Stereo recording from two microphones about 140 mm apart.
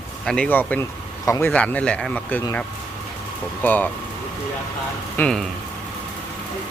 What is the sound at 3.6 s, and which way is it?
Speech, 10° left (ahead or behind).